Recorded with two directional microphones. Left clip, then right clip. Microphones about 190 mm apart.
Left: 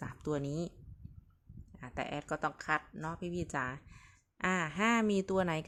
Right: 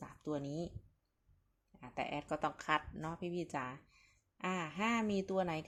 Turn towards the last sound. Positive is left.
turn(degrees=30)  # may be behind; listen again after turning